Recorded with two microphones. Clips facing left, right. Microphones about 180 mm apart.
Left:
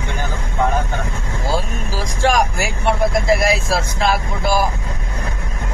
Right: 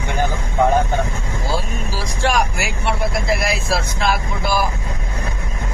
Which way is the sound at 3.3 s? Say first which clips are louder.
Left 4 dB; 40° left (ahead or behind).